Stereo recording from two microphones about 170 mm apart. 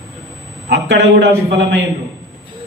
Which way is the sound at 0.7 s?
90° right.